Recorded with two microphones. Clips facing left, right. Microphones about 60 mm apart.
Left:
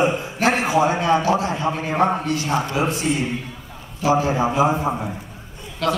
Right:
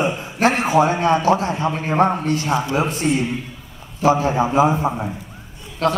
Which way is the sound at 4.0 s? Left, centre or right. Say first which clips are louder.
Right 2 dB; right.